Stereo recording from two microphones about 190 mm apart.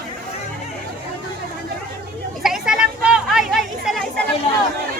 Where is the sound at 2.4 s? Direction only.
Centre (ahead or behind).